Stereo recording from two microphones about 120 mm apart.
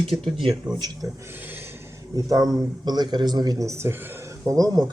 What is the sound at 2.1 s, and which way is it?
Speech, 30° right (ahead or behind).